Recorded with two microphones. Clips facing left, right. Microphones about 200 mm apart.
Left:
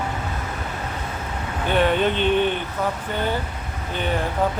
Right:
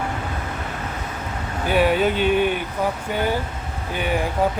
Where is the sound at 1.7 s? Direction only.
5° right (ahead or behind).